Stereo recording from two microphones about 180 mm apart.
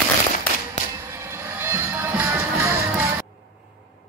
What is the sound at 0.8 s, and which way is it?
Music, 40° left (ahead or behind).